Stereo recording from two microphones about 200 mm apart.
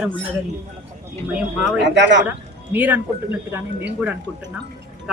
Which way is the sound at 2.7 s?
10° right (ahead or behind).